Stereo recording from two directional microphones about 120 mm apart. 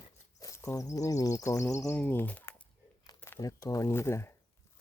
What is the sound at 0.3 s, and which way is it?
Speech, 25° left (ahead or behind).